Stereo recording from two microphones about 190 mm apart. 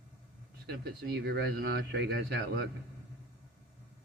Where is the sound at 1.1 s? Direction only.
60° right (ahead or behind).